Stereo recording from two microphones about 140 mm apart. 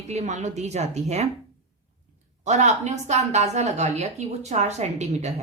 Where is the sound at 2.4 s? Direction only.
55° right (ahead or behind).